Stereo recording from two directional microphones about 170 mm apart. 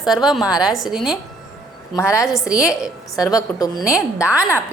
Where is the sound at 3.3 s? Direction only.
20° left (ahead or behind).